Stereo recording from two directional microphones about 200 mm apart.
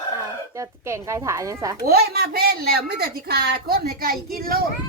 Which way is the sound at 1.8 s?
50° right (ahead or behind).